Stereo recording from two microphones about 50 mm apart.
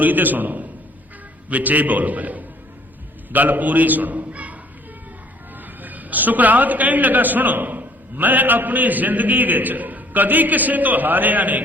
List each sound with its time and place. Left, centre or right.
0.0 s a man's voice: right
5.8 s a man's voice: right